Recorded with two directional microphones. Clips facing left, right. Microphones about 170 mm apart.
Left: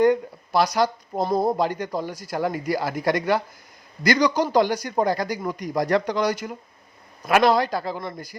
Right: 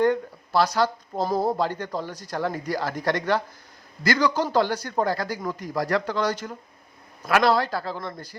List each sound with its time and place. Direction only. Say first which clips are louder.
0.0 s speech: left 3 dB; 15° left (ahead or behind)